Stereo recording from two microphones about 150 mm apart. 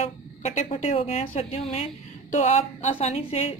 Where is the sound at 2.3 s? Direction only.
55° left (ahead or behind).